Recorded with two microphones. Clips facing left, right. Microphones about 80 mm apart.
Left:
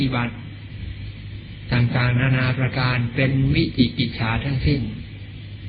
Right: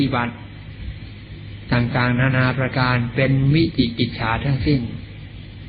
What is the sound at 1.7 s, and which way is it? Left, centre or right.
Mantra, right.